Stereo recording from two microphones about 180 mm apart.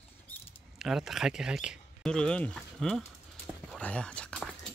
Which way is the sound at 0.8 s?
Centre (ahead or behind).